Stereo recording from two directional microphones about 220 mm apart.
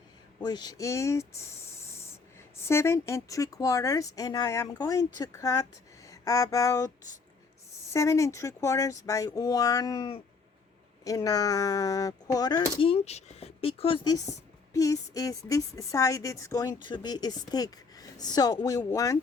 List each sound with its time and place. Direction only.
0.3 s speech: 20° left (ahead or behind)
2.6 s speech: 10° left (ahead or behind)
6.1 s a sound: 15° left (ahead or behind)
7.9 s speech: 15° left (ahead or behind)